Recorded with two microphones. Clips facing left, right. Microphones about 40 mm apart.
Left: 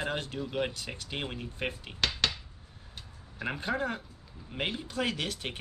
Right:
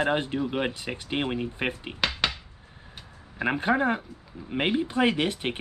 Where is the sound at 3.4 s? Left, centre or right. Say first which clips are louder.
Right 8 dB; right.